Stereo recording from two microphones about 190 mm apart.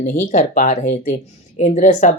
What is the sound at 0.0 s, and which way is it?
Speech, 40° left (ahead or behind).